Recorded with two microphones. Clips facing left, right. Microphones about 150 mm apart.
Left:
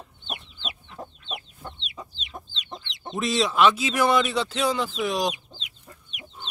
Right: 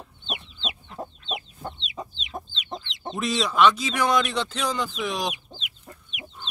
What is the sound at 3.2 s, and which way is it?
Speech, centre (ahead or behind).